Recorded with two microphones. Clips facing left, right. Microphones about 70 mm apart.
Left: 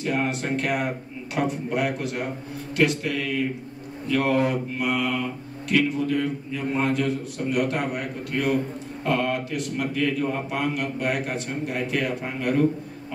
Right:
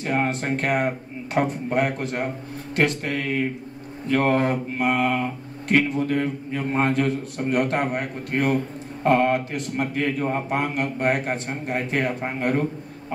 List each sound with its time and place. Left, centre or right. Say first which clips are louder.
0.0 s speech: right 2 dB; right